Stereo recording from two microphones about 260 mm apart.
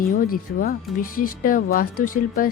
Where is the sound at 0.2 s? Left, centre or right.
Left.